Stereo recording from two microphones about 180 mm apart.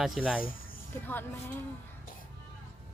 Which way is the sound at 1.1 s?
10° left (ahead or behind).